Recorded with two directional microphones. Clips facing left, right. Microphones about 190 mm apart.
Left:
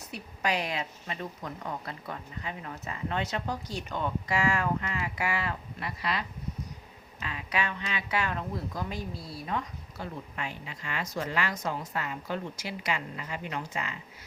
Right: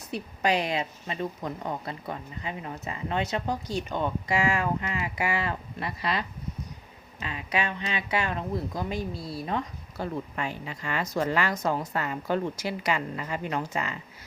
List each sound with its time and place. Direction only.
0.1 s a woman's voice: 25° right (ahead or behind)
10.0 s a woman's voice: 40° right (ahead or behind)